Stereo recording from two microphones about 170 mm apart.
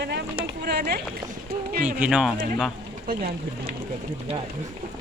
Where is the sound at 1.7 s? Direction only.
50° right (ahead or behind).